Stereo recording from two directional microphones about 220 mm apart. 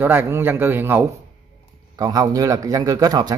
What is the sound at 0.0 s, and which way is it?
Speech, 10° right (ahead or behind).